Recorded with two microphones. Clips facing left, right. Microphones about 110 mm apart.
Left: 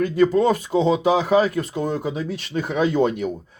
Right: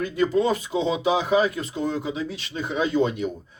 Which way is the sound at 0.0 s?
45° left (ahead or behind).